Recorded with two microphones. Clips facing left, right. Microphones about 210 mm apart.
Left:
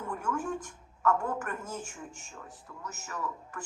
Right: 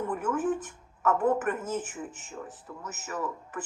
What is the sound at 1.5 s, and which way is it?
Speech, 75° right (ahead or behind).